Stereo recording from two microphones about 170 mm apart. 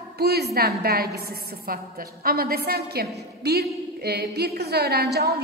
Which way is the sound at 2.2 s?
60° right (ahead or behind).